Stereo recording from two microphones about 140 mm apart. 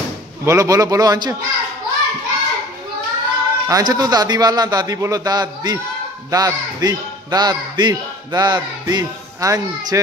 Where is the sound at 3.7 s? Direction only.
25° right (ahead or behind).